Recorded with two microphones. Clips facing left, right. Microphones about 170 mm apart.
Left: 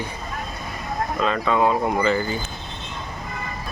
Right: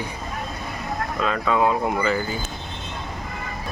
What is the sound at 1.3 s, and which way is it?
Speech, centre (ahead or behind).